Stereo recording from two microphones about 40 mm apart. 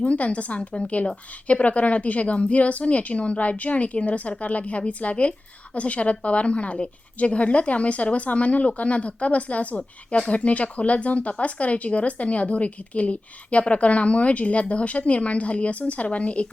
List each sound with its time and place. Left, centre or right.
0.0 s speech: left